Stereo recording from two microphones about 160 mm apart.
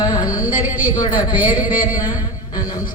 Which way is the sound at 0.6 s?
10° right (ahead or behind).